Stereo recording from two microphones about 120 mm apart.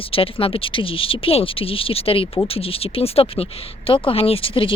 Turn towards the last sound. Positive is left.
turn(degrees=45)  # may be behind; listen again after turning